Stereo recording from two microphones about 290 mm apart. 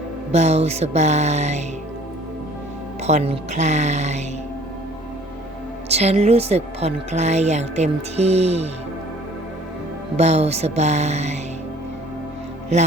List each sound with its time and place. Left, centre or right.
0.3 s a woman's voice: right
3.0 s a woman's voice: right
5.9 s a woman's voice: right
10.2 s a woman's voice: right